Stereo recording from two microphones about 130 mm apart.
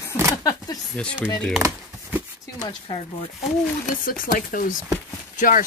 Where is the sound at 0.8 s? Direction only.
10° left (ahead or behind).